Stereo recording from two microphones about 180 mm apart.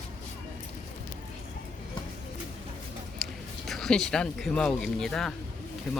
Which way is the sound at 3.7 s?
Centre (ahead or behind).